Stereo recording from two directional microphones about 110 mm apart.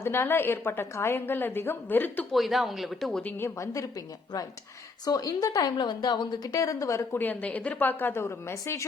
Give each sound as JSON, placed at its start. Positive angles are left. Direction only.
{"t": 0.0, "sound": "a woman's voice", "side_deg": 20}
{"t": 2.3, "sound": "speech", "side_deg": 0}
{"t": 3.3, "sound": "a woman's voice", "side_deg": 25}